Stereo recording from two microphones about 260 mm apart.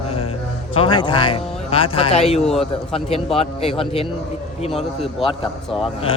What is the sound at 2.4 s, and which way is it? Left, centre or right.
Speech, centre.